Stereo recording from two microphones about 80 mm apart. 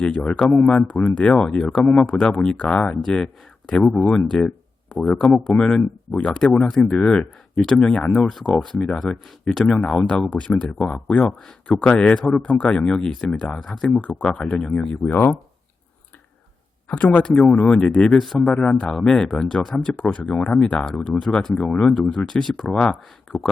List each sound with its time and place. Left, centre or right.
0.0 s speech: centre
16.9 s speech: centre
18.5 s speech: centre
20.7 s speech: centre